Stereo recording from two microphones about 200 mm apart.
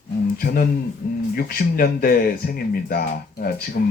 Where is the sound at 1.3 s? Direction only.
50° left (ahead or behind).